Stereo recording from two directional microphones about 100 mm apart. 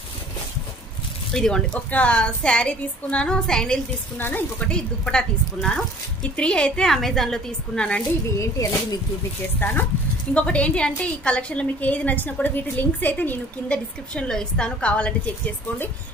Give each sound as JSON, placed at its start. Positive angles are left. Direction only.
{"t": 1.3, "sound": "a woman's voice", "side_deg": 5}
{"t": 4.2, "sound": "a woman's voice", "side_deg": 15}
{"t": 8.4, "sound": "speech", "side_deg": 35}
{"t": 9.6, "sound": "a woman's voice", "side_deg": 20}